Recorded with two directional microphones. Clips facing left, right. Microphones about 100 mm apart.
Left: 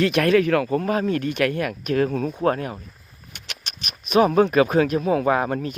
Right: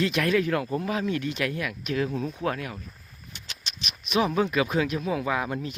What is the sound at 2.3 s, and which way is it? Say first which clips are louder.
Speech: left 7 dB; 40° left (ahead or behind).